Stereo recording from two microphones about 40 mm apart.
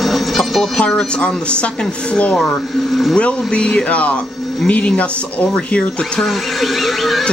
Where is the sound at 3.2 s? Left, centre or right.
Left.